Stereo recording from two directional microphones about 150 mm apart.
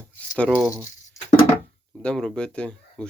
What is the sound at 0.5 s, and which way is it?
Speech, 15° right (ahead or behind).